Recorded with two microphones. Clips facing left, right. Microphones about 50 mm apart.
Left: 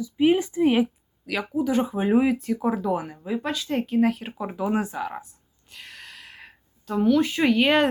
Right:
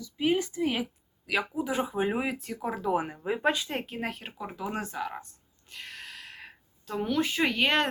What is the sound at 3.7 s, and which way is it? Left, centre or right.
Speech, centre.